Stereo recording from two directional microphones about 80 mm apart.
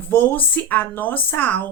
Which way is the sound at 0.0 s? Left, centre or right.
Left.